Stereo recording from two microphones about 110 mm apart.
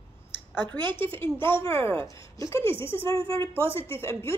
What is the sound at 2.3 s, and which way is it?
A woman's voice, 30° left (ahead or behind).